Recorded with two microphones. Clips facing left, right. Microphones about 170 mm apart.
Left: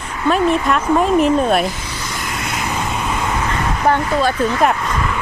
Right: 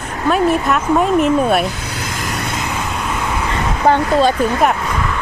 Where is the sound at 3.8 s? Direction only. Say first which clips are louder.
Right 4 dB; 25° right (ahead or behind).